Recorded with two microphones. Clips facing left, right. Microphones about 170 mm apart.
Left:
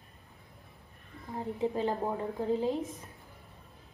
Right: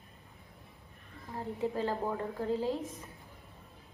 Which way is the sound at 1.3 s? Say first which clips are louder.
Left 2 dB; 20° left (ahead or behind).